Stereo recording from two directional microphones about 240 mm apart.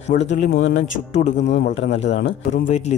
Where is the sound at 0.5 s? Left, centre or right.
Left.